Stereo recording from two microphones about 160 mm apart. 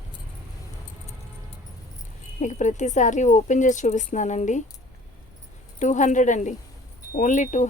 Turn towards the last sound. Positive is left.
turn(degrees=50)  # may be behind; listen again after turning